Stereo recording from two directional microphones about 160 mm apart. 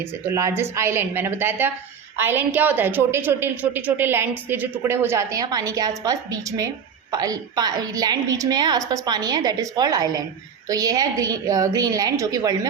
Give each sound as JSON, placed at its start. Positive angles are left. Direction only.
{"t": 0.3, "sound": "a woman's voice", "side_deg": -15}